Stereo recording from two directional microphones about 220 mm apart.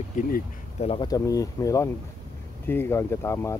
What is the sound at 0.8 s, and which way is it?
Speech, 20° left (ahead or behind).